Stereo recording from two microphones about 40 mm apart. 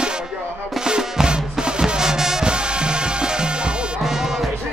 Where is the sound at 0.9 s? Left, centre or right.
Centre.